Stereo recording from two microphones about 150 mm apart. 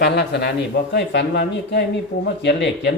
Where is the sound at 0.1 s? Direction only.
90° left.